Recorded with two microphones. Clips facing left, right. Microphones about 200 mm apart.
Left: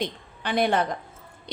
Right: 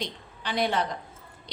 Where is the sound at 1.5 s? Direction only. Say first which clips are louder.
Left 9 dB; 50° left (ahead or behind).